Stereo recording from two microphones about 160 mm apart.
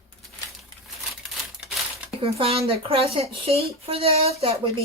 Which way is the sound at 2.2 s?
35° right (ahead or behind).